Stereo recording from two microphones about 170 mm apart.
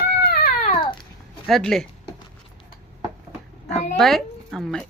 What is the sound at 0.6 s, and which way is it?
Babbling, 30° left (ahead or behind).